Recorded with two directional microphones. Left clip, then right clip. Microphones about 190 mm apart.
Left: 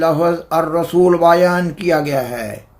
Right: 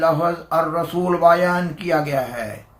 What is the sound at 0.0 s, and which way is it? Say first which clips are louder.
Speech: left 3 dB; 50° left (ahead or behind).